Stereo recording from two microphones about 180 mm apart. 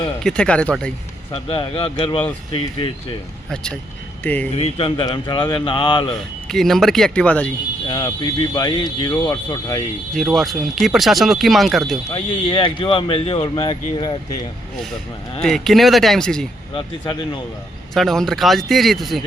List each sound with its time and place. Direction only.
0.2 s speech: 5° left (ahead or behind)
1.3 s speech: 30° left (ahead or behind)
3.5 s speech: 5° left (ahead or behind)
4.5 s speech: 30° left (ahead or behind)
6.5 s speech: centre (ahead or behind)
7.9 s speech: 25° left (ahead or behind)
10.2 s speech: centre (ahead or behind)
12.1 s speech: 30° left (ahead or behind)
15.4 s speech: centre (ahead or behind)
16.7 s speech: 25° left (ahead or behind)
17.9 s speech: centre (ahead or behind)